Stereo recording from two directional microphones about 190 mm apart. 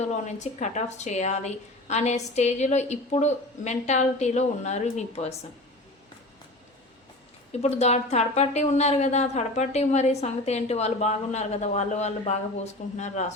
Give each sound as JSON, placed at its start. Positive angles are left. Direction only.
{"t": 0.0, "sound": "a woman's voice", "side_deg": 35}
{"t": 7.6, "sound": "a woman's voice", "side_deg": 35}